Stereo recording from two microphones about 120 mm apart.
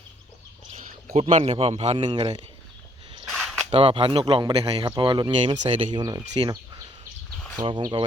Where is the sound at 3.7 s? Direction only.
50° right (ahead or behind).